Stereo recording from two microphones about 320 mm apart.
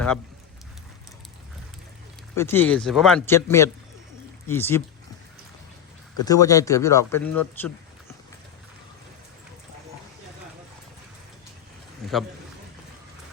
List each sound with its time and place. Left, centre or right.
2.3 s speech: centre
6.2 s speech: centre
12.0 s a man's voice: centre